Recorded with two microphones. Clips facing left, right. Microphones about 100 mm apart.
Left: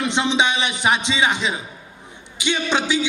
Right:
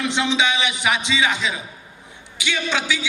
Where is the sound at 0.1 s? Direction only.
20° left (ahead or behind).